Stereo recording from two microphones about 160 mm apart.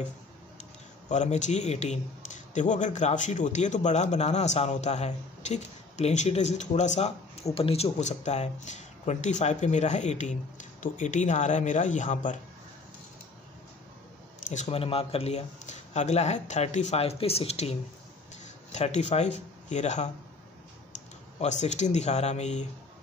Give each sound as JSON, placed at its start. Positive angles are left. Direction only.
{"t": 1.0, "sound": "a man's voice", "side_deg": 45}
{"t": 14.5, "sound": "speech", "side_deg": 40}
{"t": 21.4, "sound": "a man's voice", "side_deg": 45}